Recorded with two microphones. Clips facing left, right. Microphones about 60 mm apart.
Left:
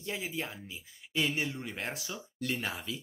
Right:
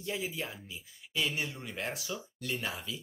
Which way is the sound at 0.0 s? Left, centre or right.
Left.